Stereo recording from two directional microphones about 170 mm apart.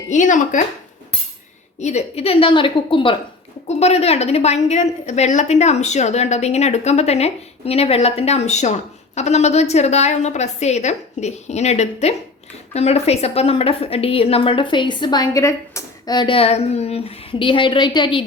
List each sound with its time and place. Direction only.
0.1 s speech: 45° left (ahead or behind)
1.8 s a woman's voice: 40° left (ahead or behind)